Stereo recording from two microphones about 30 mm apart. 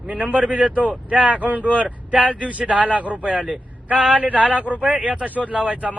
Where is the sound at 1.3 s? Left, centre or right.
Right.